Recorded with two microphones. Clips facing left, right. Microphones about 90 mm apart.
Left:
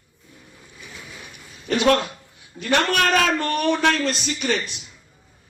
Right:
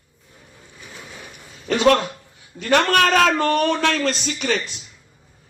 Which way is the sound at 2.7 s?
90° right.